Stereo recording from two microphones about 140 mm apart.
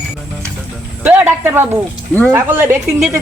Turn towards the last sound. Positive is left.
turn(degrees=-15)  # may be behind; listen again after turning